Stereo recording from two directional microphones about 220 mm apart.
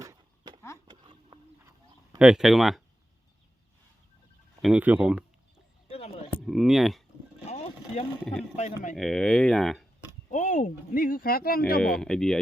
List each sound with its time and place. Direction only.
0.0 s a sound: 15° right (ahead or behind)
2.1 s speech: 5° right (ahead or behind)
4.6 s speech: 5° right (ahead or behind)
5.9 s a sound: 30° left (ahead or behind)
6.3 s speech: centre (ahead or behind)
7.4 s vehicle: 30° left (ahead or behind)
8.2 s speech: 5° left (ahead or behind)
10.3 s speech: 35° left (ahead or behind)
11.8 s speech: 5° left (ahead or behind)